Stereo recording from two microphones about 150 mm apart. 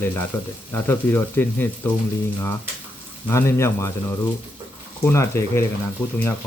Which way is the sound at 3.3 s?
20° left (ahead or behind).